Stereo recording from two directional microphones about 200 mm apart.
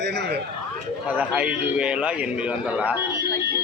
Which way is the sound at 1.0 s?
5° right (ahead or behind).